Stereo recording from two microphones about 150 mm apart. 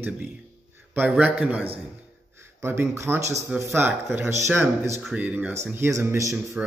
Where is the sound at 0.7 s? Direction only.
10° right (ahead or behind).